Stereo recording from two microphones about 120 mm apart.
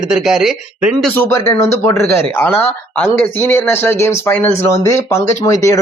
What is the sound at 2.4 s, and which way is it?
Speech, 15° left (ahead or behind).